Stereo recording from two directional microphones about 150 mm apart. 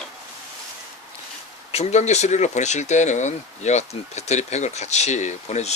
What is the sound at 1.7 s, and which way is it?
Speech, 50° left (ahead or behind).